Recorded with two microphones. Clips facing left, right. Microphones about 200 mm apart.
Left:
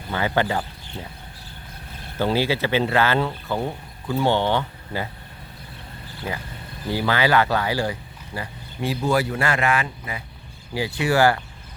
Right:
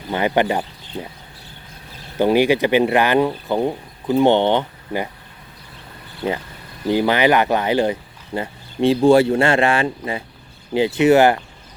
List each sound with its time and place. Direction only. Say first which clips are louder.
0.1 s speech: right 5 dB; 20° right (ahead or behind)
2.1 s speech: right 7 dB; 15° right (ahead or behind)
6.8 s speech: right 6 dB; 20° right (ahead or behind)